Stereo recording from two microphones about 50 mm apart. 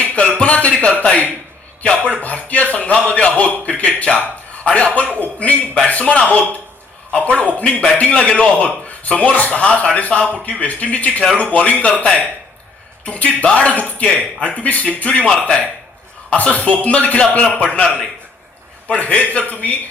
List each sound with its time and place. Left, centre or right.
0.0 s a sound: left
2.2 s a man's voice: left
18.9 s a man's voice: left